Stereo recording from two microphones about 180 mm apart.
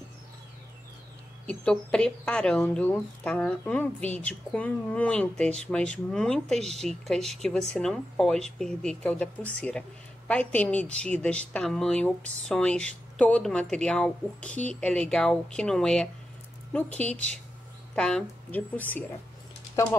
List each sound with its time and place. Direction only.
1.5 s speech: 5° left (ahead or behind)